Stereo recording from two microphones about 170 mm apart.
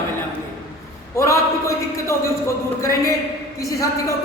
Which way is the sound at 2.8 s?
15° left (ahead or behind).